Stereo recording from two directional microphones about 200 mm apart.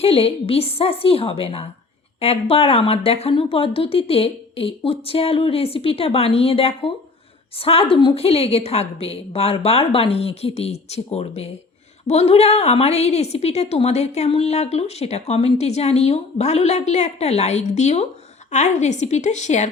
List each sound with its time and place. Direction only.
0.0 s a woman's voice: 30° left (ahead or behind)